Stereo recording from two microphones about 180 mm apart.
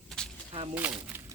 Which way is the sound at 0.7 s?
10° right (ahead or behind).